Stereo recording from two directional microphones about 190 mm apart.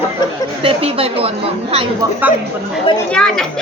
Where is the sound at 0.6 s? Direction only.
30° right (ahead or behind).